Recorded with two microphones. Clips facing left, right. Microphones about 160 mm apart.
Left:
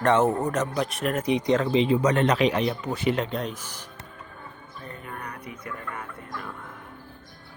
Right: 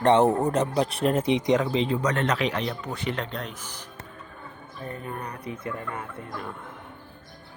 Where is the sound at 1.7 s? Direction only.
5° left (ahead or behind).